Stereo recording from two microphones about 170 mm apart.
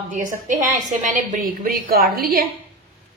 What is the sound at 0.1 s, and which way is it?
A woman's voice, 50° right (ahead or behind).